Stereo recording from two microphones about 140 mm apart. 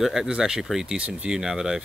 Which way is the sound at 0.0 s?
5° right (ahead or behind).